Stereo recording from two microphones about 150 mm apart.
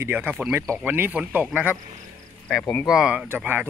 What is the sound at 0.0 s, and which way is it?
Speech, 10° right (ahead or behind).